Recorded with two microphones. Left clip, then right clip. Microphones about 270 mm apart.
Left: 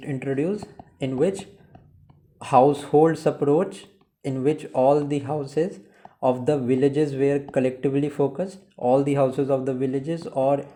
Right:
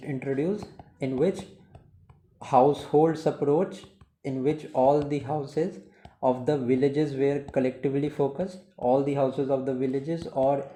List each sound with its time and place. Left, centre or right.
0.0 s speech: left
10.3 s speech: left